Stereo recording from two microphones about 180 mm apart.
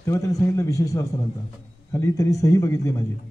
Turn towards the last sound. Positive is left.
turn(degrees=15)  # may be behind; listen again after turning